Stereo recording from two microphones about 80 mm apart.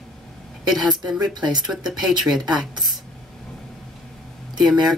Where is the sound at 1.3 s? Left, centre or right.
Right.